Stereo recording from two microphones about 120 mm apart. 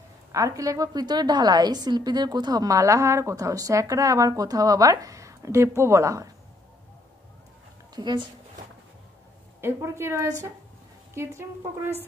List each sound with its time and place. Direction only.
0.3 s a woman's voice: 25° right (ahead or behind)
7.9 s a woman's voice: 40° right (ahead or behind)
9.6 s a woman's voice: 20° right (ahead or behind)